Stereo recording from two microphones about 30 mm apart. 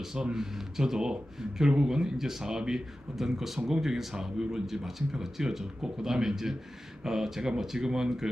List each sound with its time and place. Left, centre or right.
0.3 s speech: centre